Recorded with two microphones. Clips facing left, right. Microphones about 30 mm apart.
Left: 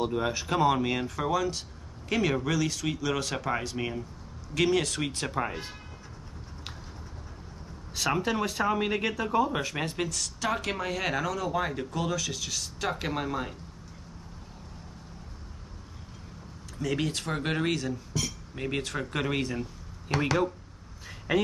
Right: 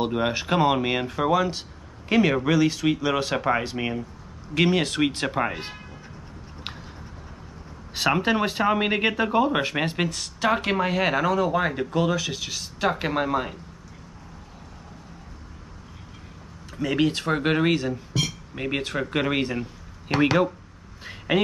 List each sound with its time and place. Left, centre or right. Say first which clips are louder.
0.0 s speech: right 4 dB; right
7.9 s speech: right 6 dB; right
16.7 s speech: right 7 dB; right
21.0 s a sound: right 4 dB; right